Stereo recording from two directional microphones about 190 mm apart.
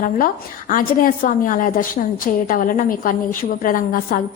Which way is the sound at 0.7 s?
45° left (ahead or behind).